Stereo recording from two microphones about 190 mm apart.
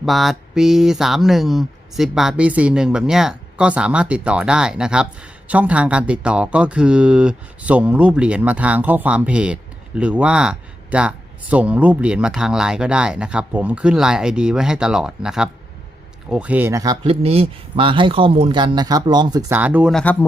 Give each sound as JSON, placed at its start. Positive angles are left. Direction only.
{"t": 0.0, "sound": "speech", "side_deg": 0}
{"t": 19.5, "sound": "speech", "side_deg": -10}
{"t": 19.9, "sound": "speech", "side_deg": 5}